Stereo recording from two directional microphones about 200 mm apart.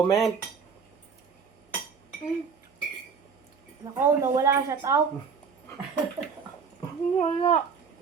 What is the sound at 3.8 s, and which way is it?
A woman's voice, 15° right (ahead or behind).